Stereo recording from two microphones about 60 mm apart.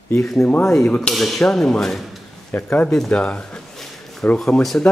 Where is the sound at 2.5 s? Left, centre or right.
Left.